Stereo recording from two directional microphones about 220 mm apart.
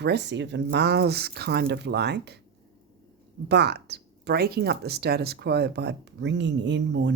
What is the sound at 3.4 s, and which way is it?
Speech, 50° right (ahead or behind).